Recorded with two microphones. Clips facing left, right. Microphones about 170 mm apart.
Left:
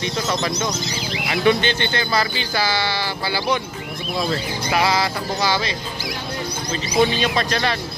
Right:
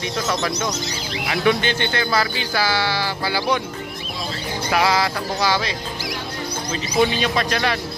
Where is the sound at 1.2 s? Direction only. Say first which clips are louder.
Left 1 dB; centre (ahead or behind).